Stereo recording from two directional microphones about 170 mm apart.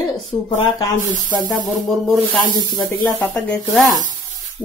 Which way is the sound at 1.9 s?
Centre (ahead or behind).